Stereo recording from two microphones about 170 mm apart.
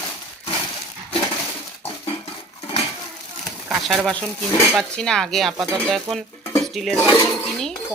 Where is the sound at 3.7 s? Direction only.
Centre (ahead or behind).